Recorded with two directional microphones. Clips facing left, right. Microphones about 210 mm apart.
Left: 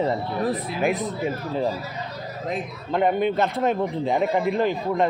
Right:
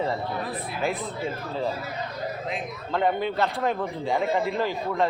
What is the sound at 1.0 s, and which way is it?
Speech, 15° left (ahead or behind).